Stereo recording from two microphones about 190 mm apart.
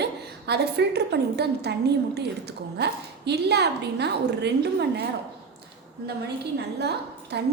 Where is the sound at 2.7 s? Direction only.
60° right (ahead or behind).